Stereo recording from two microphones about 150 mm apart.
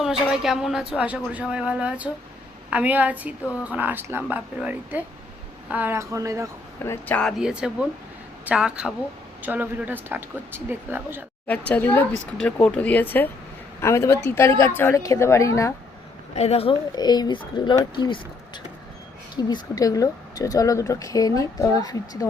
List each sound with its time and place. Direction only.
0.0 s speech: 5° right (ahead or behind); by 6.5 s 20° right (ahead or behind)
6.8 s speech: 15° left (ahead or behind)
7.2 s speech: centre (ahead or behind)
11.4 s speech: 10° left (ahead or behind)
16.3 s speech: 45° left (ahead or behind)
16.9 s speech: 25° left (ahead or behind)